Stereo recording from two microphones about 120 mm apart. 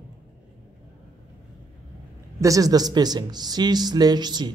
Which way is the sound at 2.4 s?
30° right (ahead or behind).